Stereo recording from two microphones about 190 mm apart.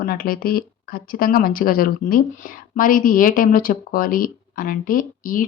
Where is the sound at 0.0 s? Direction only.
50° left (ahead or behind).